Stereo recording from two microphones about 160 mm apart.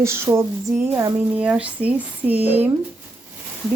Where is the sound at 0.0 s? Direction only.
15° right (ahead or behind).